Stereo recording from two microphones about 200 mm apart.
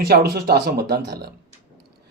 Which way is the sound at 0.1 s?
50° right (ahead or behind).